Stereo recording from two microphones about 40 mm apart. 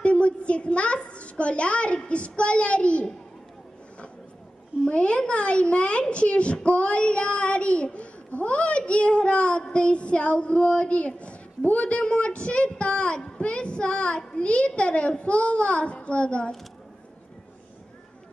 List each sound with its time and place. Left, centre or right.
0.0 s a sound: left
0.9 s a woman's voice: left
4.8 s a child's voice: left